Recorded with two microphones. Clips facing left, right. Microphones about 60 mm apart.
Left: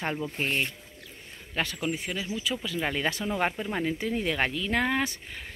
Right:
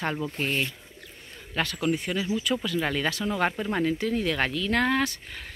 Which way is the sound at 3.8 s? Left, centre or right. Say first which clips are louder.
Right 2 dB; centre.